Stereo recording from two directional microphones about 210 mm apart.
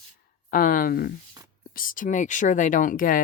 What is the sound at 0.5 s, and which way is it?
Speech, 40° left (ahead or behind).